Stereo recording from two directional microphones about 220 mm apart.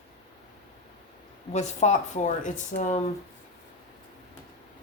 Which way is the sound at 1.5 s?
35° left (ahead or behind).